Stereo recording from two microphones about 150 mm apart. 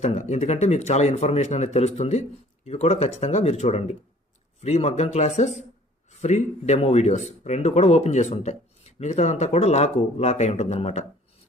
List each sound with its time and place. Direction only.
0.0 s speech: 50° left (ahead or behind)